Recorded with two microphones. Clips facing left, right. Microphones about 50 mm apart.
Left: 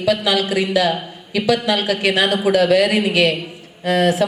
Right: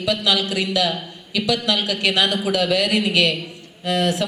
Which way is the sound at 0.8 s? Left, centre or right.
Left.